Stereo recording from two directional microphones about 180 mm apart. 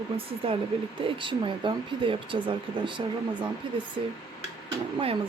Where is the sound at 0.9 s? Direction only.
30° right (ahead or behind).